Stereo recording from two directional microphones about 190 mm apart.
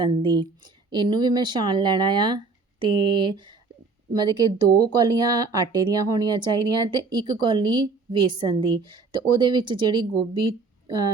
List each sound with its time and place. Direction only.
0.0 s speech: 25° right (ahead or behind)